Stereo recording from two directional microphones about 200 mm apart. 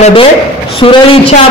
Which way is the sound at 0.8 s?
25° left (ahead or behind).